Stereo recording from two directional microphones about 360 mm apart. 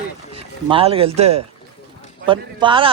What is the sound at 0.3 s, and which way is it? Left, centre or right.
A man's voice, centre.